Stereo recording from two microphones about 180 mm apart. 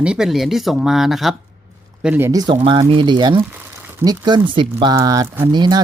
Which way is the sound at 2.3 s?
20° right (ahead or behind).